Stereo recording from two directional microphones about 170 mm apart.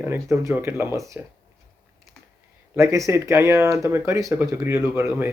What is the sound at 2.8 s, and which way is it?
Speech, 15° right (ahead or behind).